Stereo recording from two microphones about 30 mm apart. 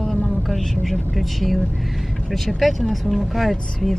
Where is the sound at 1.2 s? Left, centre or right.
Centre.